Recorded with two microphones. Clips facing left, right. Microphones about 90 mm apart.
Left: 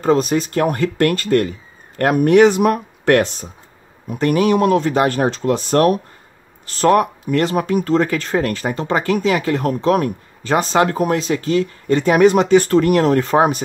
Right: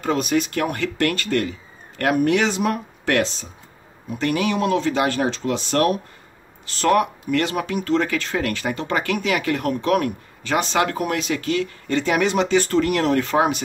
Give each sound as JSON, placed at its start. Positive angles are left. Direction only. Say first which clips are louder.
{"t": 0.0, "sound": "speech", "louder": "left 5 dB", "side_deg": 35}